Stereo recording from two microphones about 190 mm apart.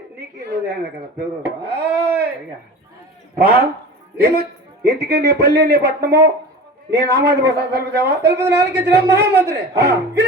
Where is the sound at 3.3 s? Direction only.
55° right (ahead or behind).